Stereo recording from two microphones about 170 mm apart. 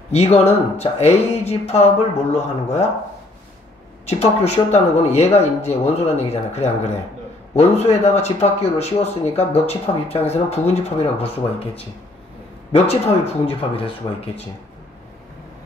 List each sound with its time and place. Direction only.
0.1 s speech: 35° left (ahead or behind)
4.0 s speech: 40° left (ahead or behind)